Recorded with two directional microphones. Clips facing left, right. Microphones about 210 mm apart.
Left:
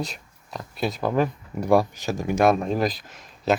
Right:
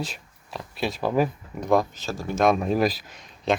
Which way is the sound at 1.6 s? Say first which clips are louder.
Left 2 dB; 10° left (ahead or behind).